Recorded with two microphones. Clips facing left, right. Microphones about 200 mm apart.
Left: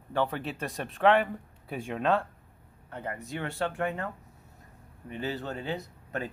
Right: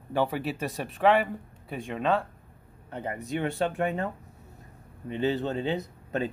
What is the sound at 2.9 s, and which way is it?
Speech, 20° right (ahead or behind).